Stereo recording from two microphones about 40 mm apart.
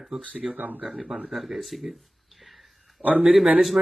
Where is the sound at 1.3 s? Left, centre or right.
Centre.